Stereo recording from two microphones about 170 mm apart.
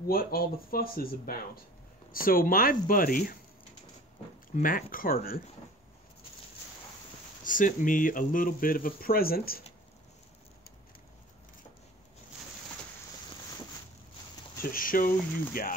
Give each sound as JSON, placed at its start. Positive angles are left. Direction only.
{"t": 0.0, "sound": "speech", "side_deg": 60}
{"t": 4.6, "sound": "speech", "side_deg": 55}
{"t": 7.4, "sound": "speech", "side_deg": 50}
{"t": 14.6, "sound": "speech", "side_deg": 55}